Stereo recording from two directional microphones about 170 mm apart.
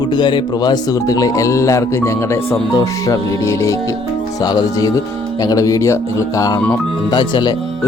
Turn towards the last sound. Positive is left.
turn(degrees=25)  # may be behind; listen again after turning